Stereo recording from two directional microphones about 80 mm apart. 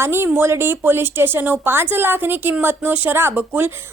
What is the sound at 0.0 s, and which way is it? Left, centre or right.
A woman's voice, right.